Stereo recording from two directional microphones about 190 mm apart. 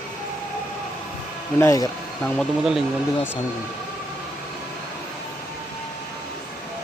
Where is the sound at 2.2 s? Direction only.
Centre (ahead or behind).